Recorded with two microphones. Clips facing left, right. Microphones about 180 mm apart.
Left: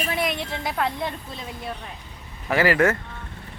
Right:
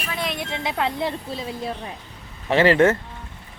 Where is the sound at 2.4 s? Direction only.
25° right (ahead or behind).